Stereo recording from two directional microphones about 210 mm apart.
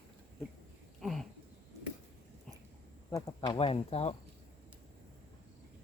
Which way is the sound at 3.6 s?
30° left (ahead or behind).